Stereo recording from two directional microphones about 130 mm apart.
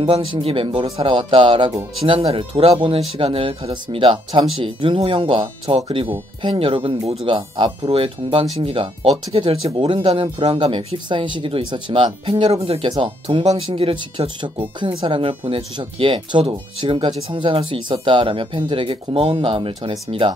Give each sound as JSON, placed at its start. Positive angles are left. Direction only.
{"t": 0.0, "sound": "speech", "side_deg": -45}